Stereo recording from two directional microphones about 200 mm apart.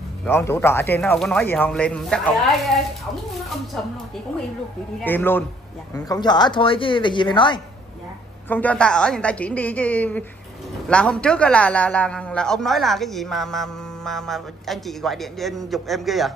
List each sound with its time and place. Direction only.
0.2 s speech: 10° left (ahead or behind)
5.0 s speech: 10° left (ahead or behind)
6.0 s a woman's voice: 20° left (ahead or behind)
8.5 s a man's voice: 10° left (ahead or behind)